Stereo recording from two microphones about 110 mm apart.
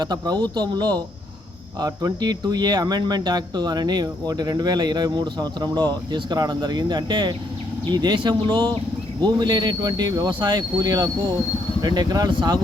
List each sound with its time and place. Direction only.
0.0 s speech: 40° right (ahead or behind)
12.3 s speech: 45° right (ahead or behind)